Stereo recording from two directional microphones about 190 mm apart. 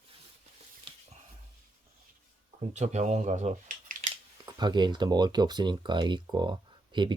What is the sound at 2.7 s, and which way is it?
Speech, 35° right (ahead or behind).